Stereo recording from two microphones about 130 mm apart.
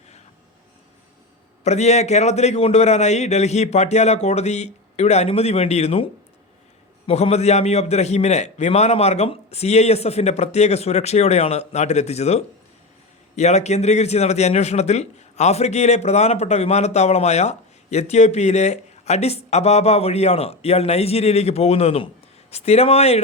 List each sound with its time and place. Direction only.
1.6 s a man's voice: 60° left (ahead or behind)
7.1 s a man's voice: 55° left (ahead or behind)